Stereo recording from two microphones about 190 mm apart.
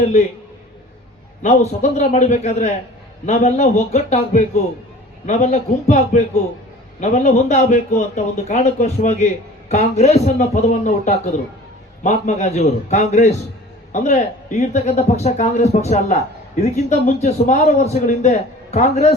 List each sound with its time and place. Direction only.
1.4 s a man's voice: 35° left (ahead or behind)